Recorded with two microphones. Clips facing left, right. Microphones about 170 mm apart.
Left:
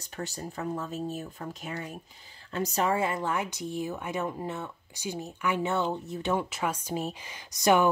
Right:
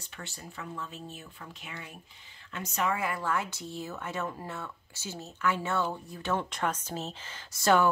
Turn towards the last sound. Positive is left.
turn(degrees=15)  # may be behind; listen again after turning